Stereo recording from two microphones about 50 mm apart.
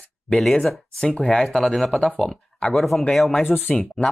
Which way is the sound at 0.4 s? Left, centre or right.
Centre.